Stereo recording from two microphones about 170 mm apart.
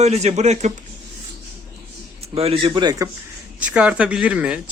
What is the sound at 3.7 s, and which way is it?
Speech, 5° right (ahead or behind).